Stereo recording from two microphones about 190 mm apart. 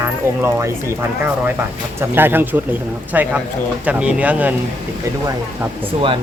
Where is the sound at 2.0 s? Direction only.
10° right (ahead or behind).